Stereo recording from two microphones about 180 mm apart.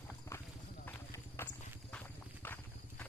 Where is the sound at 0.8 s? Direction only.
15° left (ahead or behind).